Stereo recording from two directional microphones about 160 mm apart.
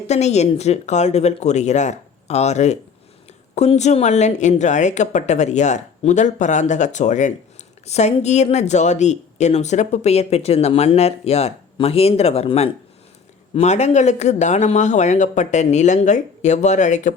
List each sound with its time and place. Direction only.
0.1 s a woman's voice: 45° left (ahead or behind)